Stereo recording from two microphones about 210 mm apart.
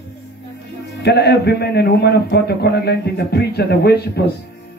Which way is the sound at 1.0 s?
50° left (ahead or behind).